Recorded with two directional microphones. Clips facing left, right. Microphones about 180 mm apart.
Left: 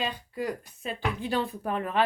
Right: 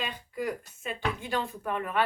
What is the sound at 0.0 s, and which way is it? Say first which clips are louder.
Speech: left 2 dB; 30° left (ahead or behind).